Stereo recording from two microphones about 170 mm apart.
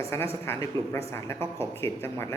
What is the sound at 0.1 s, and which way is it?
A man's voice, 15° left (ahead or behind).